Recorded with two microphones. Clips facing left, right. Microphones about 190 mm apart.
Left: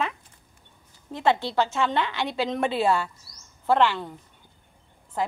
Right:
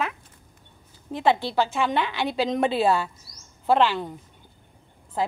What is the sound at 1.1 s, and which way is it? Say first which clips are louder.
A woman's voice: right 1 dB; 15° right (ahead or behind).